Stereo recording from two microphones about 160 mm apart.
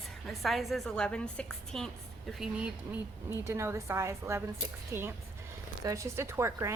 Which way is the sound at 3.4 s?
15° right (ahead or behind).